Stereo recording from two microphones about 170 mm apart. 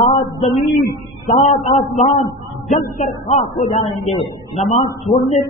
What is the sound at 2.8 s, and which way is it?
A man's voice, 50° left (ahead or behind).